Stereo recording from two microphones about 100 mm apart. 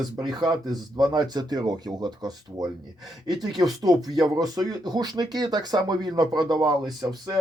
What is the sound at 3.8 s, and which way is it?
Speech, 40° right (ahead or behind).